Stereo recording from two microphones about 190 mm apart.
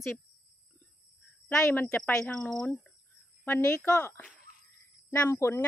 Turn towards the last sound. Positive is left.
turn(degrees=10)  # may be behind; listen again after turning